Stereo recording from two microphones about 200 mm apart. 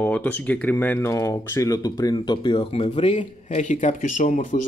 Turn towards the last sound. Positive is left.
turn(degrees=40)  # may be behind; listen again after turning